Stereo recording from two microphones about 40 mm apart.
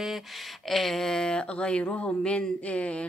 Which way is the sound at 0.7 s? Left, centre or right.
Centre.